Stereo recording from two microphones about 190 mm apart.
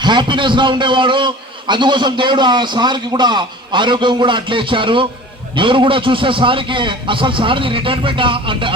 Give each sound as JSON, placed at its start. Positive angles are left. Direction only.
{"t": 0.0, "sound": "a man's voice", "side_deg": -25}